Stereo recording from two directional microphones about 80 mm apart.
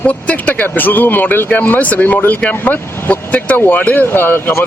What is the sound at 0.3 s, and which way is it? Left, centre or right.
Speech, centre.